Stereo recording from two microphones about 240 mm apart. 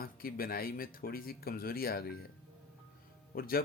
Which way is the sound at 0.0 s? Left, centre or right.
Left.